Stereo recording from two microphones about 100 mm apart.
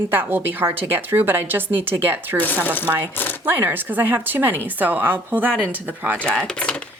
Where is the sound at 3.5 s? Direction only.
20° right (ahead or behind).